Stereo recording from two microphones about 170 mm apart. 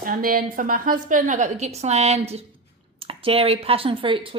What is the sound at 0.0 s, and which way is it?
Speech, 55° right (ahead or behind).